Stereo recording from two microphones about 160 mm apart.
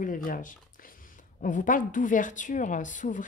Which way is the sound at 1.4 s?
55° left (ahead or behind).